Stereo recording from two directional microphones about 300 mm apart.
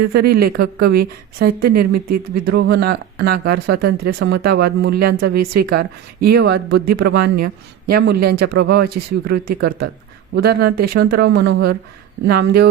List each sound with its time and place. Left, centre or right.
0.0 s a woman's voice: right